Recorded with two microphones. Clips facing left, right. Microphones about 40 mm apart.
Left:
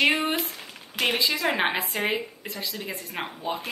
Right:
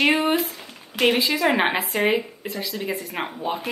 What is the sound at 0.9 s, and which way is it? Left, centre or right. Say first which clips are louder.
Speech: right 5 dB; centre.